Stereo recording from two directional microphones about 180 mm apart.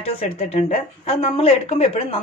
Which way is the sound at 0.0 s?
35° left (ahead or behind).